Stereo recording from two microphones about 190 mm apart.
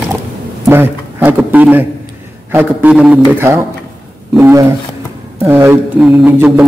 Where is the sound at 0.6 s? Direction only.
10° right (ahead or behind).